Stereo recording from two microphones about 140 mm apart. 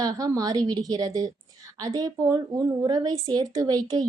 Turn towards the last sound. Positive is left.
turn(degrees=-30)  # may be behind; listen again after turning